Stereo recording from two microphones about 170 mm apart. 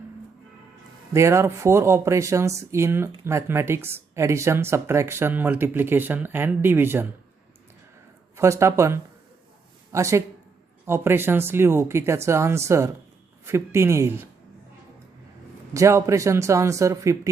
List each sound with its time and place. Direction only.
1.1 s speech: 15° right (ahead or behind)
8.4 s speech: 15° right (ahead or behind)
15.7 s speech: 20° right (ahead or behind)